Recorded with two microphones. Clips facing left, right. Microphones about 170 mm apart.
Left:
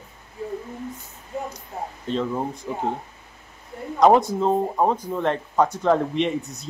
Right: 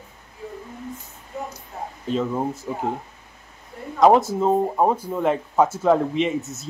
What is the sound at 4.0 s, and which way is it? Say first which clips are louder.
Speech: right 1 dB; centre (ahead or behind).